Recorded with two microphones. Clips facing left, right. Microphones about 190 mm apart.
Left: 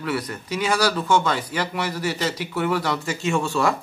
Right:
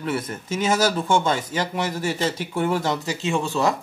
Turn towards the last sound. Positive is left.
turn(degrees=-20)  # may be behind; listen again after turning